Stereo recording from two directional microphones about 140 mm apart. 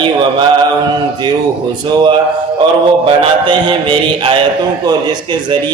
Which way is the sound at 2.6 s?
35° right (ahead or behind).